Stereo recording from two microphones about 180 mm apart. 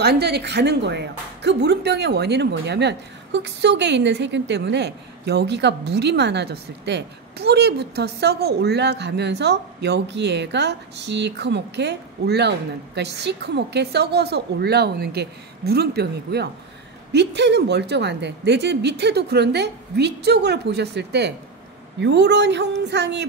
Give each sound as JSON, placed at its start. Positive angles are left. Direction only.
{"t": 0.0, "sound": "speech", "side_deg": -65}